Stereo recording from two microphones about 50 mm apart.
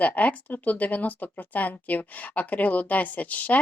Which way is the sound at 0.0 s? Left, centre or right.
Left.